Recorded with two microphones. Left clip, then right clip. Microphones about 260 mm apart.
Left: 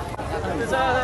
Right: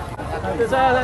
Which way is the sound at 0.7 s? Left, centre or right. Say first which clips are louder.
Right 4 dB; right.